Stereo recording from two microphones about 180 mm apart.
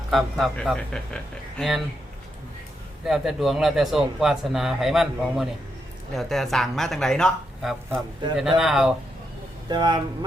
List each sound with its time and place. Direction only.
0.1 s speech: centre (ahead or behind)
3.1 s speech: centre (ahead or behind)
9.6 s speech: 25° right (ahead or behind)